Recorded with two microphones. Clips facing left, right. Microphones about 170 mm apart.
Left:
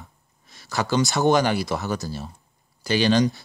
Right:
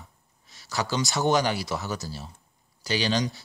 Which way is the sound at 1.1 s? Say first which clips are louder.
Left 3 dB; 55° left (ahead or behind).